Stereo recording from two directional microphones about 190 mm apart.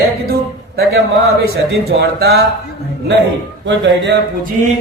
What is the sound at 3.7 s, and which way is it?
Speech, 65° right (ahead or behind).